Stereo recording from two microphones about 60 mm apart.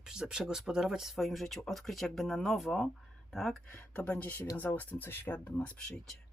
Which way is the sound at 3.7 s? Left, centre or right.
Left.